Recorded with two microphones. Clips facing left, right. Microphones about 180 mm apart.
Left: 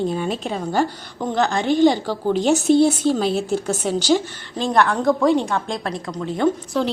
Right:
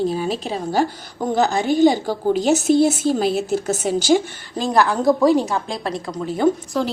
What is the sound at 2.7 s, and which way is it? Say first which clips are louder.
A woman's voice: left 2 dB; 5° right (ahead or behind).